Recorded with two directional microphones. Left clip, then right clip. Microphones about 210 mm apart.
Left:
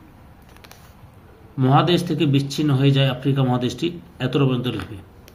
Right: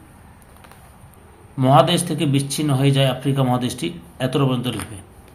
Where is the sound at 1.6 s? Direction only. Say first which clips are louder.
Right 3 dB; 5° left (ahead or behind).